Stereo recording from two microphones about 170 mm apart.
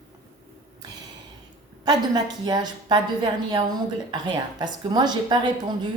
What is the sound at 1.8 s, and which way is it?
A woman's voice, 25° right (ahead or behind).